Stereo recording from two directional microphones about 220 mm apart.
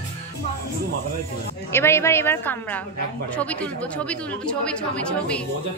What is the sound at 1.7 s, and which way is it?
A woman's voice, 10° left (ahead or behind).